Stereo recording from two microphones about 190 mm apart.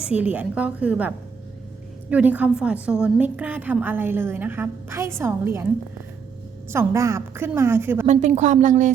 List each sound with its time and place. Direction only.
0.0 s a woman's voice: 5° right (ahead or behind)
6.7 s a woman's voice: 15° right (ahead or behind)
8.0 s speech: 40° right (ahead or behind)